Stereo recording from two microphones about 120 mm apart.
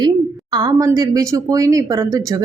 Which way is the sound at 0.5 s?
35° right (ahead or behind).